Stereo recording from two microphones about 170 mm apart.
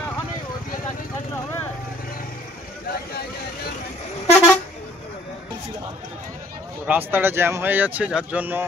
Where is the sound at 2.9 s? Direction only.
65° left (ahead or behind).